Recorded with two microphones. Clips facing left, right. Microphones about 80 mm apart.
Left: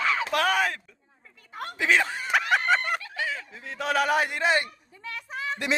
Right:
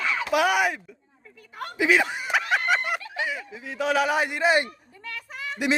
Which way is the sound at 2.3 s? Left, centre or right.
Centre.